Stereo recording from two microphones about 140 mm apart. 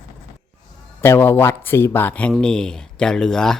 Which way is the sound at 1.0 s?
15° left (ahead or behind).